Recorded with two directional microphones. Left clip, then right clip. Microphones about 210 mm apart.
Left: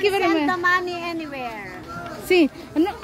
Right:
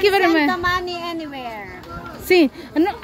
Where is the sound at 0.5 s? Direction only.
30° right (ahead or behind).